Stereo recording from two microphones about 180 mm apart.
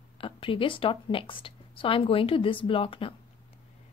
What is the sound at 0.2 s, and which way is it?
A woman's voice, 30° left (ahead or behind).